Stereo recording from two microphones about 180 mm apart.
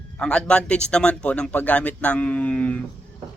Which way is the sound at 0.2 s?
5° left (ahead or behind).